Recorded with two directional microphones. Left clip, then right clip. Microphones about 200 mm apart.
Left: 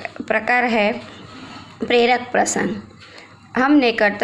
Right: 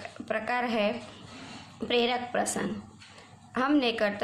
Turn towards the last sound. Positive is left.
turn(degrees=15)  # may be behind; listen again after turning